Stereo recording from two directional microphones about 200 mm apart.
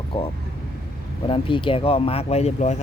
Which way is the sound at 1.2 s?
25° left (ahead or behind).